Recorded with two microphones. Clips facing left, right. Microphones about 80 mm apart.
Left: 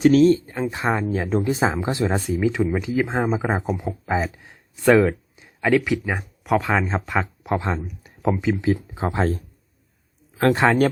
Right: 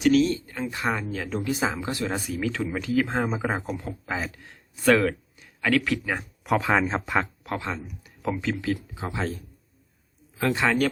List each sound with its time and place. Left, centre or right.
0.0 s speech: left; by 6.2 s centre
6.4 s speech: centre
7.6 s speech: left
8.4 s speech: centre
9.0 s speech: left